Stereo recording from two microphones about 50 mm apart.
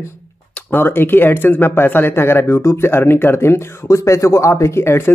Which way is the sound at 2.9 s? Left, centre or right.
Left.